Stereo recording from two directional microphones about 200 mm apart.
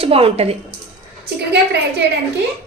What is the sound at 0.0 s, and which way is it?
Speech, 30° right (ahead or behind).